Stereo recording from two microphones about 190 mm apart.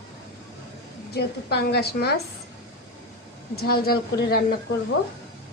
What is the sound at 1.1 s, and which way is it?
A woman's voice, 55° left (ahead or behind).